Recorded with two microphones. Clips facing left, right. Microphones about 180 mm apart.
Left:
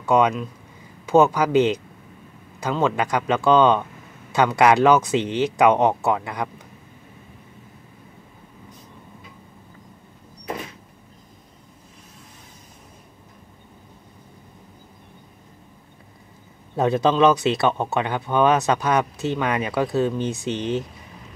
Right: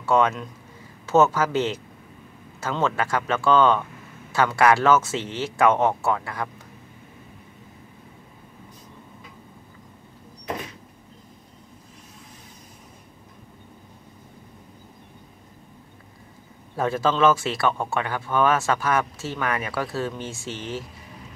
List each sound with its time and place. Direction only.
0.0 s a man's voice: 15° left (ahead or behind)
16.7 s speech: 20° left (ahead or behind)